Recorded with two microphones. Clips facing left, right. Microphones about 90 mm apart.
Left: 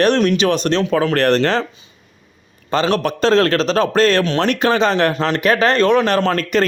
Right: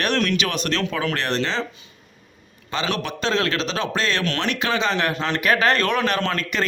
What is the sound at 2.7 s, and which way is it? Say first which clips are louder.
Speech: left 8 dB; 40° left (ahead or behind).